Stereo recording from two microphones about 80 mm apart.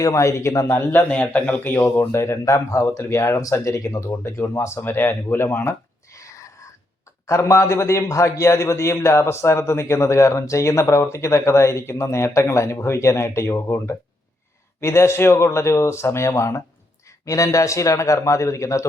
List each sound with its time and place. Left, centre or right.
0.0 s a man's voice: left
1.1 s speech: centre
2.1 s a man's voice: left